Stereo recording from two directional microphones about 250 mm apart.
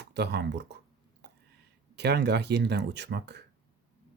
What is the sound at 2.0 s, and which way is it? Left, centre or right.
Speech, right.